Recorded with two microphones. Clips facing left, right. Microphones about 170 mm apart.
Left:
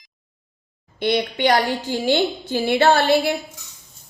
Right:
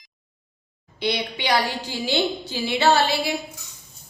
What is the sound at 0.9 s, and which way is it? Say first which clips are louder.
A woman's voice: left 5 dB; 50° left (ahead or behind).